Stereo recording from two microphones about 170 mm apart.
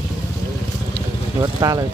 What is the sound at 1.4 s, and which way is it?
Speech, 20° right (ahead or behind).